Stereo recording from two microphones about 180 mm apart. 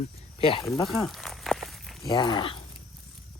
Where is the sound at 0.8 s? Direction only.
Centre (ahead or behind).